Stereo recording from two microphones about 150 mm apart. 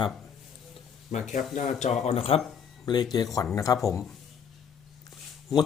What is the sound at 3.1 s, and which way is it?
Speech, 25° left (ahead or behind).